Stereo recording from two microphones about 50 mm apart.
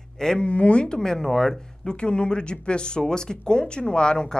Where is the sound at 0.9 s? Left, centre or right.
Centre.